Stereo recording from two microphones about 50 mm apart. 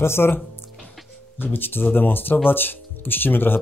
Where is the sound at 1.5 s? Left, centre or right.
Left.